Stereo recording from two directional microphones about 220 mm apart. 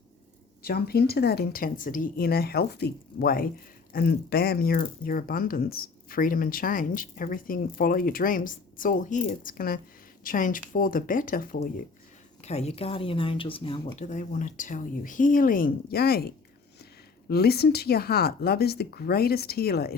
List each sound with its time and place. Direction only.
0.6 s speech: 45° left (ahead or behind)
12.4 s speech: 30° left (ahead or behind); by 20.0 s 45° left (ahead or behind)